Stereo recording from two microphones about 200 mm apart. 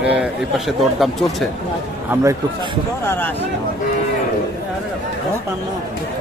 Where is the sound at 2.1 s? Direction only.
15° right (ahead or behind).